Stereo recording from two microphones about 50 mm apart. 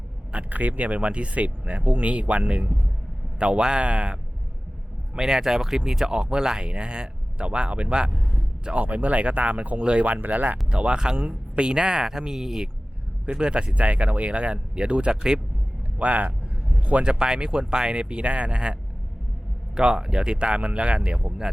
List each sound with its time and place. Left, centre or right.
0.3 s speech: right
10.7 s speech: centre
13.2 s speech: centre
16.0 s speech: right